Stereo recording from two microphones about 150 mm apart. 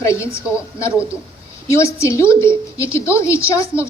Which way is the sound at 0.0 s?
20° left (ahead or behind).